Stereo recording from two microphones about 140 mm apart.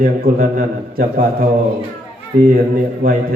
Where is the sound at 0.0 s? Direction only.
90° right.